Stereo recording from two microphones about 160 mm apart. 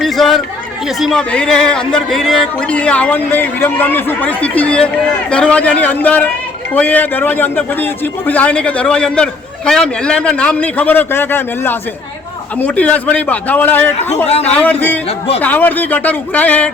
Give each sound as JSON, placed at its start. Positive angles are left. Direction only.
{"t": 0.0, "sound": "chatter", "side_deg": 0}
{"t": 0.9, "sound": "a man's voice", "side_deg": 0}
{"t": 14.3, "sound": "speech", "side_deg": 40}
{"t": 14.5, "sound": "a man's voice", "side_deg": 10}